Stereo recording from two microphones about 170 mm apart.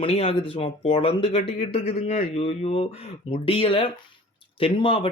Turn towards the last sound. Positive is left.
turn(degrees=30)  # may be behind; listen again after turning